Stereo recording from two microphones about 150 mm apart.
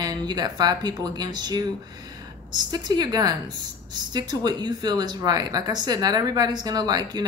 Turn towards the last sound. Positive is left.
turn(degrees=-25)  # may be behind; listen again after turning